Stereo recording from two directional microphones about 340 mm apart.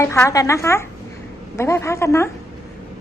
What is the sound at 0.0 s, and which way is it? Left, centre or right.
Speech, centre.